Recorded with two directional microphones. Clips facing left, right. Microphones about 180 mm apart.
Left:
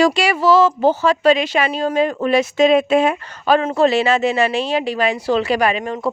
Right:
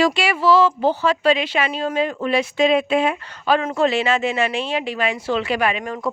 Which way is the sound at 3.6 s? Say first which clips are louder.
Left 4 dB; 35° left (ahead or behind).